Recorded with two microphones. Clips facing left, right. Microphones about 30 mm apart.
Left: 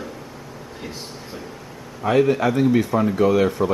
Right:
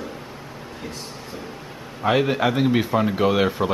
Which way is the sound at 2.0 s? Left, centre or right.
Right.